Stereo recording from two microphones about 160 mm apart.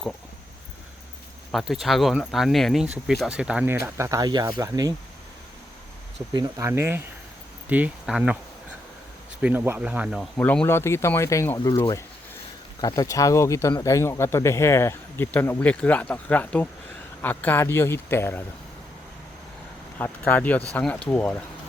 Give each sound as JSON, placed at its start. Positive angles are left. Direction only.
{"t": 1.5, "sound": "speech", "side_deg": 0}
{"t": 6.3, "sound": "speech", "side_deg": -25}
{"t": 9.4, "sound": "speech", "side_deg": -10}
{"t": 10.3, "sound": "speech", "side_deg": 10}
{"t": 20.0, "sound": "speech", "side_deg": 10}